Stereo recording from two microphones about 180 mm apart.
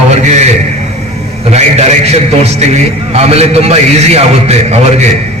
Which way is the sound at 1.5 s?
35° right (ahead or behind).